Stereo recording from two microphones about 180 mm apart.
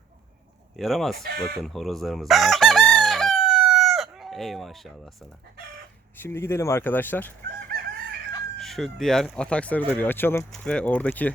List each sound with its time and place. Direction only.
0.8 s speech: centre (ahead or behind)
1.2 s speech: 60° right (ahead or behind)
1.6 s crowing: centre (ahead or behind)
6.1 s speech: 15° left (ahead or behind)
8.5 s speech: centre (ahead or behind)